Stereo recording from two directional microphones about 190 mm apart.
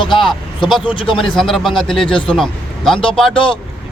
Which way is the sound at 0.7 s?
5° right (ahead or behind).